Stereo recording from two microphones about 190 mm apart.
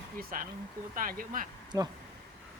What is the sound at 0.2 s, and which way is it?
Speech, 50° right (ahead or behind).